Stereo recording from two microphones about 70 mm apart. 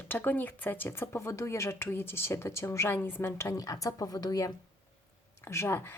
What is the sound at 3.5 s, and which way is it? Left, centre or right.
Speech, left.